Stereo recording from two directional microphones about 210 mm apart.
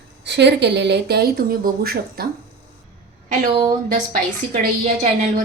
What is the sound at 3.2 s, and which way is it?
A woman's voice, 40° right (ahead or behind).